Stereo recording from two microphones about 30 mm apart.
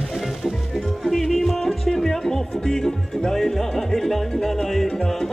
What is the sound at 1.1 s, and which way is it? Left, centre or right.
Music, centre.